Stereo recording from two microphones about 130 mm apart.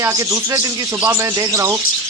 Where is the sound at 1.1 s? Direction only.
25° right (ahead or behind).